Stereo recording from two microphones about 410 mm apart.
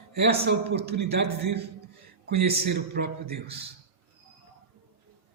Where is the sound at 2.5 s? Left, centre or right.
Right.